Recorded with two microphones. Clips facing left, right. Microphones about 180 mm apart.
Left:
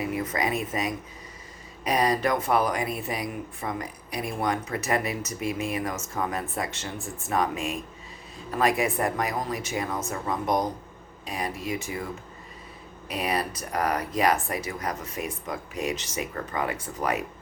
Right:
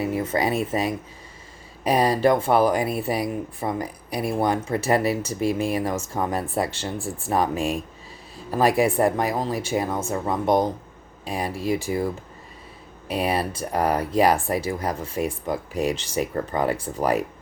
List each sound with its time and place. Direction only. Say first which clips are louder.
0.0 s speech: right 5 dB; 30° right (ahead or behind)
13.1 s speech: right 4 dB; 30° right (ahead or behind)